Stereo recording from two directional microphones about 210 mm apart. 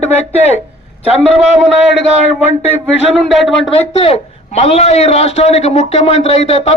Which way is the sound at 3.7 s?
30° left (ahead or behind).